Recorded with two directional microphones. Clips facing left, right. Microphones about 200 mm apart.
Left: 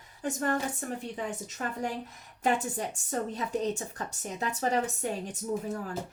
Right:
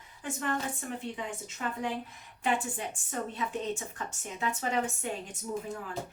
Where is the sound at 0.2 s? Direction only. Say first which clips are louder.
Left 4 dB; 40° left (ahead or behind).